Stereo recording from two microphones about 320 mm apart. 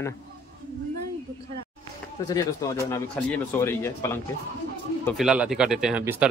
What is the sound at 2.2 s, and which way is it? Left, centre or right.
Speech, centre.